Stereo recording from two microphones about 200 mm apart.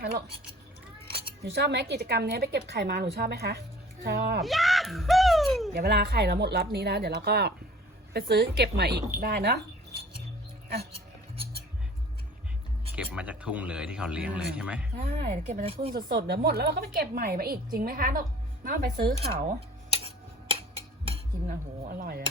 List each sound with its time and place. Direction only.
1.5 s a woman's voice: 60° right (ahead or behind)
4.4 s speech: centre (ahead or behind)
5.7 s a woman's voice: 50° right (ahead or behind)
13.0 s speech: 5° right (ahead or behind)
14.9 s speech: 40° right (ahead or behind)
16.0 s a woman's voice: 50° right (ahead or behind)
19.9 s tick-tock: 30° right (ahead or behind)
21.0 s cutlery: 30° right (ahead or behind)
21.8 s a woman's voice: 50° right (ahead or behind)